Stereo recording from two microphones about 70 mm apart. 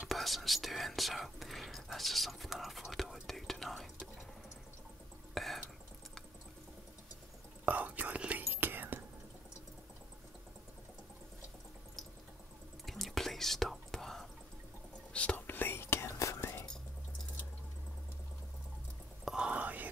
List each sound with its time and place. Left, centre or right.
0.1 s speech: centre
5.3 s a sound: centre
7.6 s speech: right
8.5 s whispering: right
12.8 s whispering: centre
15.1 s whispering: centre
15.4 s whispering: left
19.2 s whispering: centre